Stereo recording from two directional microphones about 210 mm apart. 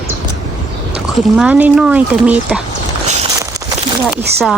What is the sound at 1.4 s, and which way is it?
Speech, 5° right (ahead or behind).